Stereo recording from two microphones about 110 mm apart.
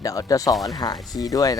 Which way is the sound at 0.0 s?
30° left (ahead or behind).